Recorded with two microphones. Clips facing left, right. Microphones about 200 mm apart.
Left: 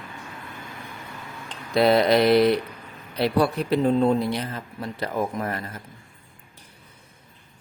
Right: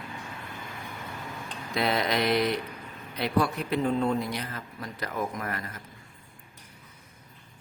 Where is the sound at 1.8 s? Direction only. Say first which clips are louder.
Left 9 dB; 35° left (ahead or behind).